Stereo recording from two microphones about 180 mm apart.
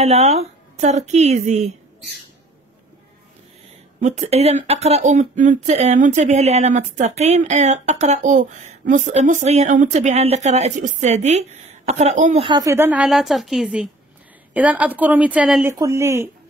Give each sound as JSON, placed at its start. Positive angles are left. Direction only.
{"t": 0.0, "sound": "speech", "side_deg": -35}
{"t": 4.0, "sound": "speech", "side_deg": -35}
{"t": 12.4, "sound": "a woman's voice", "side_deg": -20}
{"t": 13.0, "sound": "a woman's voice", "side_deg": 0}
{"t": 15.6, "sound": "a woman's voice", "side_deg": -15}